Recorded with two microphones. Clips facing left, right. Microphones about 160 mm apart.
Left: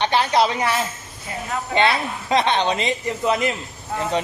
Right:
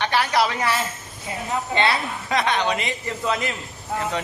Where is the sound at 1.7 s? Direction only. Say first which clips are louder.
Left 4 dB; 20° left (ahead or behind).